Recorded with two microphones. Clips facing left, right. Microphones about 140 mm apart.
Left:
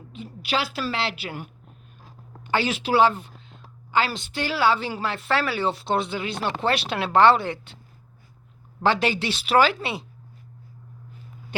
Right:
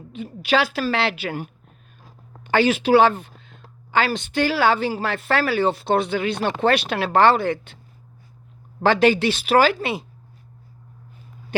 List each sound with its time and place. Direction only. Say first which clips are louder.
0.8 s a woman's voice: right 5 dB; 60° right (ahead or behind)
2.6 s a woman's voice: right 5 dB; 55° right (ahead or behind)
8.9 s speech: right 6 dB; 60° right (ahead or behind)